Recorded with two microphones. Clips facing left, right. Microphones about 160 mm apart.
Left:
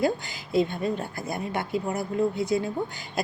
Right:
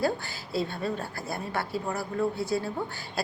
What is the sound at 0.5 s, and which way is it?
A woman's voice, 15° left (ahead or behind).